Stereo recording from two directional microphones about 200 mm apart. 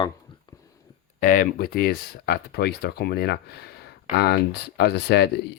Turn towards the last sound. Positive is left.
turn(degrees=55)  # may be behind; listen again after turning